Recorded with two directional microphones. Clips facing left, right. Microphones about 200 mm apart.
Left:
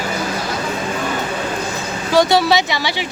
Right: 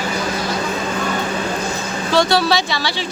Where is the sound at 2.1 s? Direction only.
15° left (ahead or behind).